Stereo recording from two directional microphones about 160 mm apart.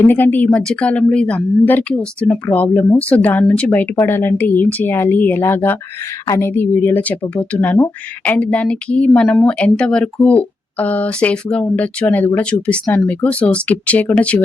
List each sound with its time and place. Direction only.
0.0 s a woman's voice: 10° left (ahead or behind)